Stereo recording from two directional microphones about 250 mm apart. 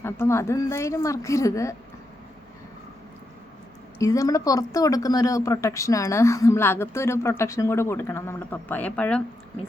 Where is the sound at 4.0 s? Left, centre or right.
Centre.